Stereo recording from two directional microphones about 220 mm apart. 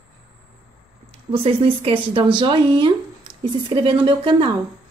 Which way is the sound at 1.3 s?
25° right (ahead or behind).